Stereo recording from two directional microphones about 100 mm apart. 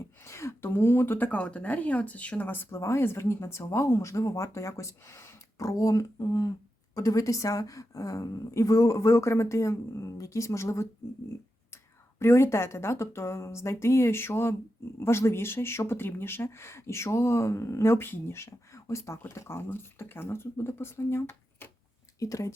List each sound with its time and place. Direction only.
0.2 s a woman's voice: 30° left (ahead or behind)
12.2 s a woman's voice: 25° left (ahead or behind)